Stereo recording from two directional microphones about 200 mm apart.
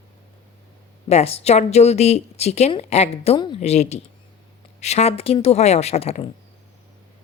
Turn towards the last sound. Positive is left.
turn(degrees=30)  # may be behind; listen again after turning